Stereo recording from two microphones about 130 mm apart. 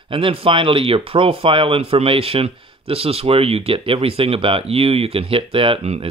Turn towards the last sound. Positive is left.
turn(degrees=-50)  # may be behind; listen again after turning